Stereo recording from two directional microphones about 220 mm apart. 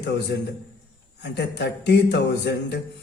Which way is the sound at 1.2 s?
50° left (ahead or behind).